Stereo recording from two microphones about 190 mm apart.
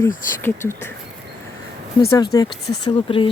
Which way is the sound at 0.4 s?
10° left (ahead or behind).